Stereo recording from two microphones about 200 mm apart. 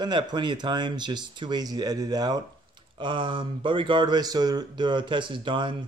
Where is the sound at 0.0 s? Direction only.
20° right (ahead or behind).